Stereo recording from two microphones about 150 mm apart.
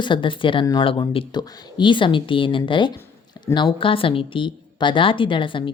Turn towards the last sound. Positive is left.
turn(degrees=35)  # may be behind; listen again after turning